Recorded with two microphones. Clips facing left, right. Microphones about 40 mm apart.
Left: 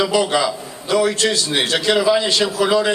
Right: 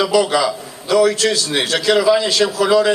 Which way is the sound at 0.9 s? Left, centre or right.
Right.